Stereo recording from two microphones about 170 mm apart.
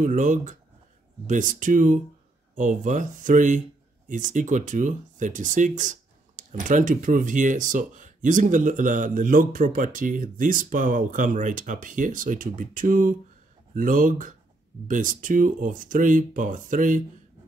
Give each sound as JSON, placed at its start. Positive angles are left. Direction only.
{"t": 0.0, "sound": "speech", "side_deg": -50}